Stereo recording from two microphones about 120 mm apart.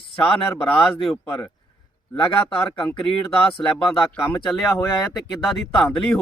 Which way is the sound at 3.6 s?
5° left (ahead or behind).